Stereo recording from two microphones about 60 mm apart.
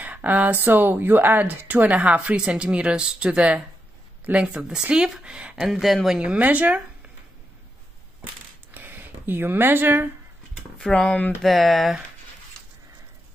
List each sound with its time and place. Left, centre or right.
0.0 s speech: right
5.7 s speech: centre
6.1 s speech: right
8.7 s a sound: right
10.9 s speech: centre
11.4 s speech: centre